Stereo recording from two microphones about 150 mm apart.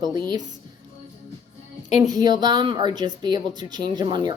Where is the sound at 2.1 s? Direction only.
25° right (ahead or behind).